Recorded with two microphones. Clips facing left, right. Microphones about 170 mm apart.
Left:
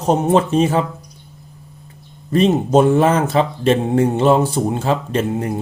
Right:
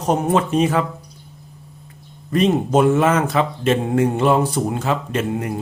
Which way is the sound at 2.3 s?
30° left (ahead or behind).